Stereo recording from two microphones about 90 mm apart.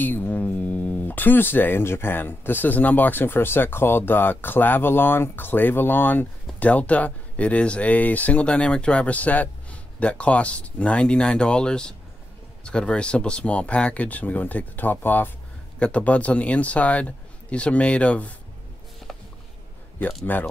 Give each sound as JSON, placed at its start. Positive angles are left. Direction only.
{"t": 0.0, "sound": "speech", "side_deg": 20}
{"t": 20.3, "sound": "speech", "side_deg": 20}